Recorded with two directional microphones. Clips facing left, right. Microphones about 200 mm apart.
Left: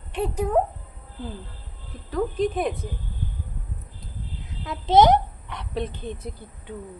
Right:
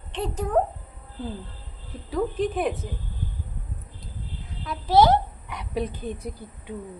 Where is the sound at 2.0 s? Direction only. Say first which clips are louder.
Left 1 dB; 5° right (ahead or behind).